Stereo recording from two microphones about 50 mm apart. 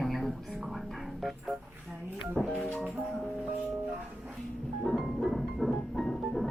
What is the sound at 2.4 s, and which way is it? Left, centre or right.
Music, left.